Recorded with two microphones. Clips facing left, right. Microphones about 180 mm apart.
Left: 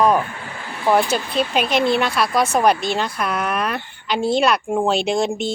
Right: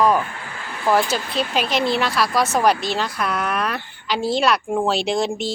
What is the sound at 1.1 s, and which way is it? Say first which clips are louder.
Speech: left 2 dB; centre (ahead or behind).